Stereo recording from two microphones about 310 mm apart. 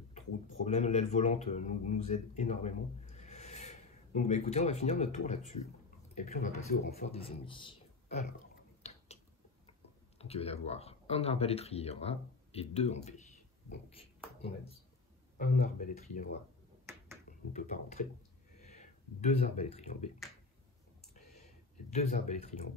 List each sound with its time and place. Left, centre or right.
0.7 s speech: left
8.8 s finger snapping: left
10.1 s speech: centre
13.9 s a sound: centre
15.3 s speech: left
17.5 s speech: left
21.9 s speech: left